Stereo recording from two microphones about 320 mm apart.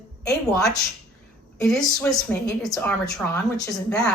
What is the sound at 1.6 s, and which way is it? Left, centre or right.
A woman's voice, centre.